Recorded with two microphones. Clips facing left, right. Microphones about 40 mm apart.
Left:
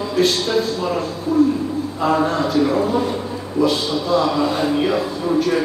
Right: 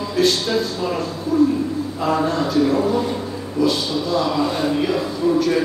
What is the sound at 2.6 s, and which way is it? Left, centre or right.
Speech, left.